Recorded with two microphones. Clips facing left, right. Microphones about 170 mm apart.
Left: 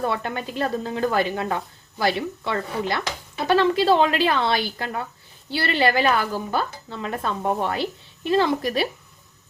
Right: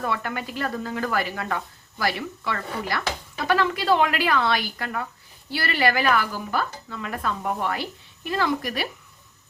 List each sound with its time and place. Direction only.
0.0 s speech: 25° left (ahead or behind)